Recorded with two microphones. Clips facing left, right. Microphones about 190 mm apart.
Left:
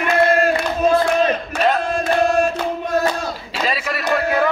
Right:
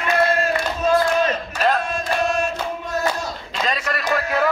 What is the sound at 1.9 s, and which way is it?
Chant, 60° left (ahead or behind).